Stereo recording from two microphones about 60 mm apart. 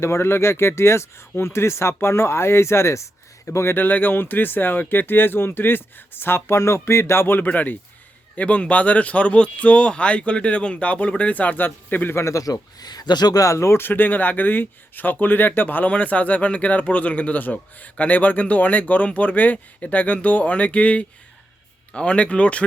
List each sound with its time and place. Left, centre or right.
0.0 s speech: left
3.8 s speech: left
12.1 s speech: left